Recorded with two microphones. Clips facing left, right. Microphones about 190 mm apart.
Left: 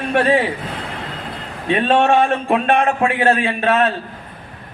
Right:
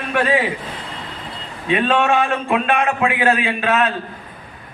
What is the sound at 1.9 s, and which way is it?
A man's voice, 40° left (ahead or behind).